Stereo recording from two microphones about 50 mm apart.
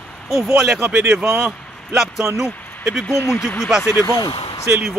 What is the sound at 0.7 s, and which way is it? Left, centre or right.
Speech, right.